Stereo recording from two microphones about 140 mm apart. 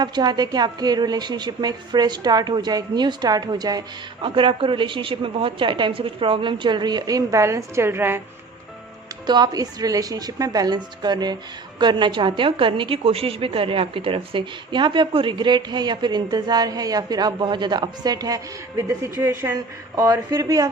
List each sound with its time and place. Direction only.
0.0 s a woman's voice: 30° right (ahead or behind)
9.2 s a woman's voice: 30° right (ahead or behind)